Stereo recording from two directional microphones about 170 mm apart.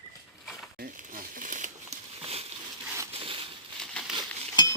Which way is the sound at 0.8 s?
55° right (ahead or behind).